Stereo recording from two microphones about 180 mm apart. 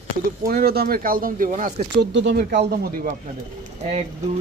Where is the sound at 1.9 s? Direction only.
80° right; by 3.1 s 60° right (ahead or behind).